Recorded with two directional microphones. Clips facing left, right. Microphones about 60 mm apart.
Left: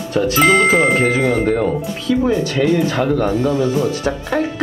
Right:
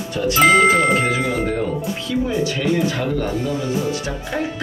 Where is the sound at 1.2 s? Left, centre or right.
Left.